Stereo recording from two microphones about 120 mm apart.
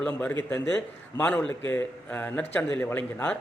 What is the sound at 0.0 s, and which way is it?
Speech, 10° left (ahead or behind).